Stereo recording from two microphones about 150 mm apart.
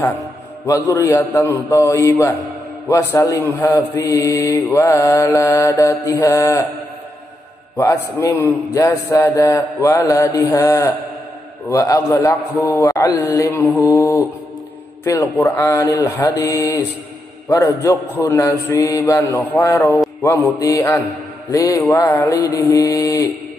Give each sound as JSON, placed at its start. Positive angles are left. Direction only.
{"t": 0.7, "sound": "mantra", "side_deg": 20}
{"t": 7.7, "sound": "mantra", "side_deg": 20}
{"t": 17.8, "sound": "a man's voice", "side_deg": 15}
{"t": 19.0, "sound": "mantra", "side_deg": 20}